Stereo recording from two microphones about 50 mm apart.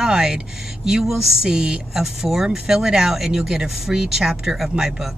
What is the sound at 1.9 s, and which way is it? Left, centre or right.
Speech, centre.